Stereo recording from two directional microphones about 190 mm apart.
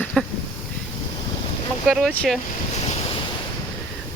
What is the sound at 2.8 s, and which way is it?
Waves, 30° left (ahead or behind).